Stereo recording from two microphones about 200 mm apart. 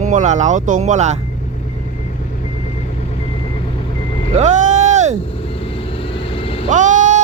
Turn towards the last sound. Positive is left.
turn(degrees=-40)  # may be behind; listen again after turning